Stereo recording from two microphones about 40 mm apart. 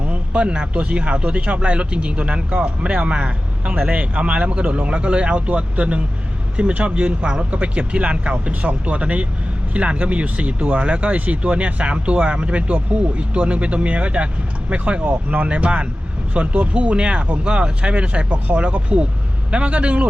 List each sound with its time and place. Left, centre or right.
0.1 s speech: right